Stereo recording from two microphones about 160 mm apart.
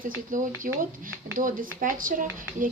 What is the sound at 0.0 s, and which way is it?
Speech, 55° right (ahead or behind).